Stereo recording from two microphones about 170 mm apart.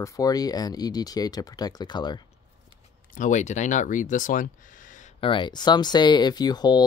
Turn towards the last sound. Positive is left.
turn(degrees=25)  # may be behind; listen again after turning